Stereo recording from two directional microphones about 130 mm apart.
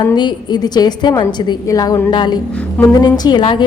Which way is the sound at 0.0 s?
35° left (ahead or behind).